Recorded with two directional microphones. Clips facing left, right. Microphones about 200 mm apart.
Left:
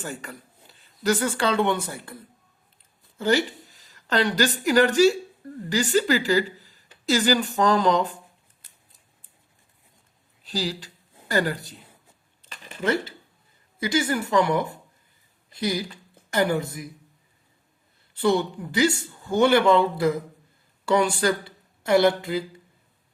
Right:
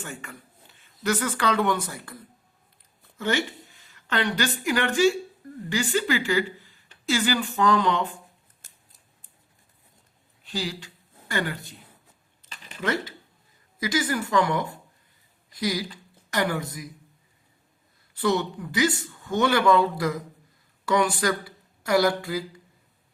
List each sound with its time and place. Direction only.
0.0 s a woman's voice: 35° left (ahead or behind)
8.6 s scissors: 45° right (ahead or behind)
10.4 s a woman's voice: 35° left (ahead or behind)
12.8 s speech: 30° left (ahead or behind)
18.2 s speech: 30° left (ahead or behind)